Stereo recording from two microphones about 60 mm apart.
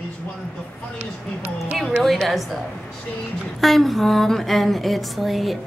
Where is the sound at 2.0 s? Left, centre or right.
Centre.